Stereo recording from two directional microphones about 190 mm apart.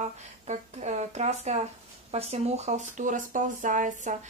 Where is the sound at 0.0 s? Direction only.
35° right (ahead or behind).